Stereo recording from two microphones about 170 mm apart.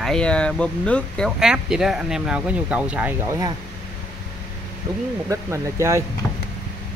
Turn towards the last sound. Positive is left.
turn(degrees=-15)  # may be behind; listen again after turning